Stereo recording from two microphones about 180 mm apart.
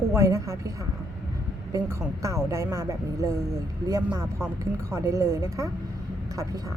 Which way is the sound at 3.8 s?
15° right (ahead or behind).